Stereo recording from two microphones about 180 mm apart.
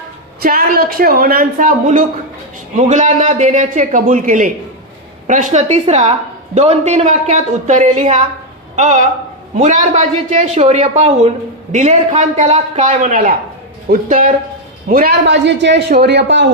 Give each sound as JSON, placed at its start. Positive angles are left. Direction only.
{"t": 0.4, "sound": "a man's voice", "side_deg": -55}